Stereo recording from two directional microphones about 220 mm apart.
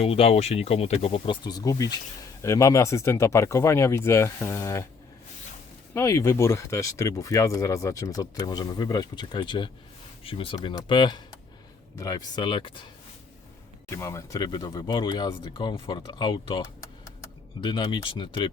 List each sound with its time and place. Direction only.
0.0 s speech: 25° left (ahead or behind)
5.9 s speech: 15° left (ahead or behind)
13.9 s speech: 15° left (ahead or behind)